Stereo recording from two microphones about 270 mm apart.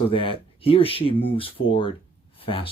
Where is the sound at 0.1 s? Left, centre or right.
Centre.